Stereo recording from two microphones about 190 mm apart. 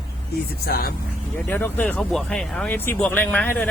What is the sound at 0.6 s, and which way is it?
Speech, 50° left (ahead or behind).